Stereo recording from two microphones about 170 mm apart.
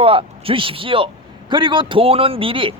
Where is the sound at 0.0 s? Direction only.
35° right (ahead or behind).